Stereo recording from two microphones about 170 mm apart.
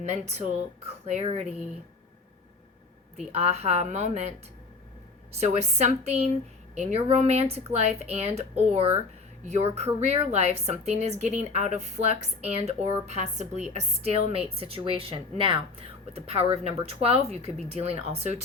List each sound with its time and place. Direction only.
0.0 s a woman's voice: 40° right (ahead or behind)
3.2 s a woman's voice: 35° right (ahead or behind)
5.4 s a woman's voice: 40° right (ahead or behind)